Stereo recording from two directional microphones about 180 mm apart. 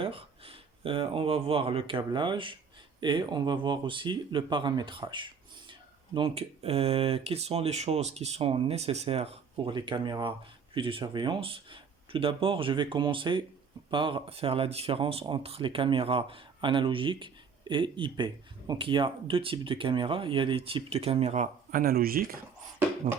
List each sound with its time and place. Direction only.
0.0 s speech: 30° right (ahead or behind); by 22.4 s 55° right (ahead or behind)